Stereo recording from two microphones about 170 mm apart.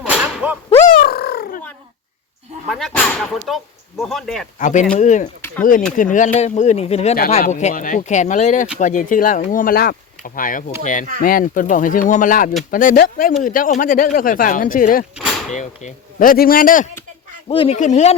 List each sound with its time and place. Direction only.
0.4 s a sound: 5° right (ahead or behind)
0.9 s a sound: 65° left (ahead or behind)
2.6 s speech: centre (ahead or behind)
4.5 s speech: 45° left (ahead or behind)
15.1 s door: centre (ahead or behind)
15.5 s speech: 50° left (ahead or behind)
17.5 s speech: 30° left (ahead or behind)
17.7 s speech: 45° left (ahead or behind)